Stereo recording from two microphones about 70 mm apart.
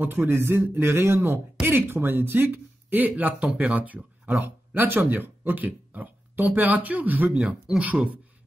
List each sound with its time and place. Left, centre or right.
0.0 s a man's voice: right
7.7 s speech: centre